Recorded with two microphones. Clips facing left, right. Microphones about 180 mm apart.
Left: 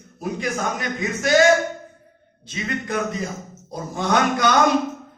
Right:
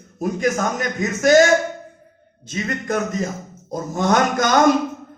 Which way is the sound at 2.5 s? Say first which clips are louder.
Right 3 dB; 45° right (ahead or behind).